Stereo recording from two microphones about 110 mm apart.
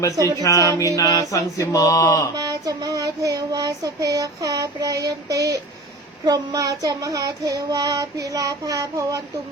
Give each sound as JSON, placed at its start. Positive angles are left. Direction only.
{"t": 0.4, "sound": "mantra", "side_deg": 30}
{"t": 2.3, "sound": "child singing", "side_deg": -30}